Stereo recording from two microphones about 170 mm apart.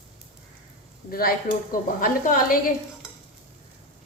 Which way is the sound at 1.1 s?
60° left (ahead or behind).